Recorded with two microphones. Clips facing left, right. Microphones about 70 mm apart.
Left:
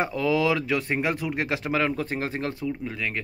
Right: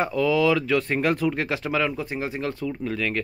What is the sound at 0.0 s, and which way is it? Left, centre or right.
Speech, left.